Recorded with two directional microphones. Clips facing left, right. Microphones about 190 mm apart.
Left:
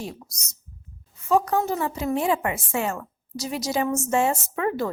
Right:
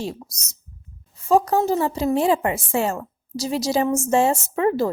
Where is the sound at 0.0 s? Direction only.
30° right (ahead or behind).